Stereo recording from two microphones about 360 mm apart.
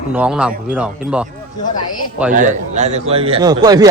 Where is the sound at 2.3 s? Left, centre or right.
Right.